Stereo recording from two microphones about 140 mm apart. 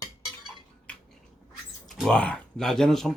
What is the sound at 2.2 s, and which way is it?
Speech, 5° left (ahead or behind).